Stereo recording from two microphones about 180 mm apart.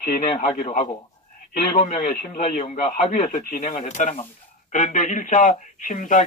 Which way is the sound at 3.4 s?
45° left (ahead or behind).